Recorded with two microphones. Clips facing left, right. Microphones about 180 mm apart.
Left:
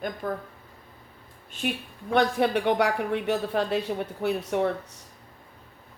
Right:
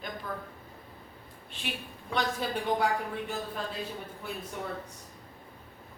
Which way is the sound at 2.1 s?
60° left (ahead or behind).